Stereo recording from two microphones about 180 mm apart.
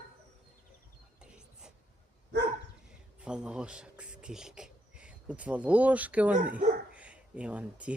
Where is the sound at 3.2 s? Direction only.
5° right (ahead or behind).